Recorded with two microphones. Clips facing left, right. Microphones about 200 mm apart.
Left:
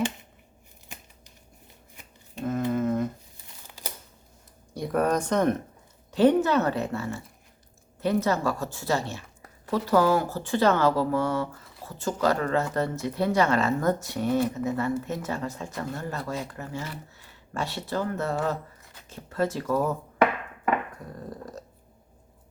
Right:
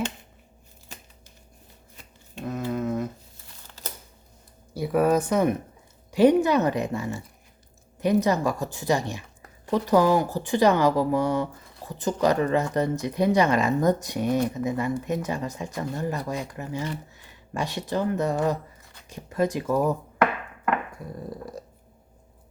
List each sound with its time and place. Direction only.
2.4 s a sound: centre (ahead or behind)
3.7 s crumpling: 10° left (ahead or behind)
4.7 s speech: 5° right (ahead or behind)
21.0 s speech: 10° right (ahead or behind)